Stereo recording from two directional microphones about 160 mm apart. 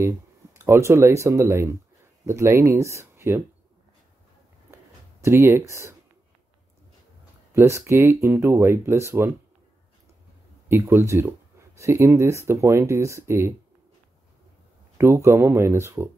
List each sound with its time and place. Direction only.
0.7 s speech: 15° right (ahead or behind)
5.2 s speech: 15° right (ahead or behind)
7.5 s speech: 15° right (ahead or behind)
10.7 s speech: 15° right (ahead or behind)
15.0 s speech: 15° right (ahead or behind)